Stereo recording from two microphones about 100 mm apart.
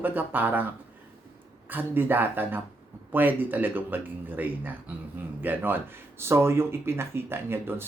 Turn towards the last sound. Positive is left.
turn(degrees=-25)  # may be behind; listen again after turning